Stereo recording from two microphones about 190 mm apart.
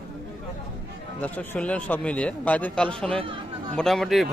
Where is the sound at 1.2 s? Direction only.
10° left (ahead or behind).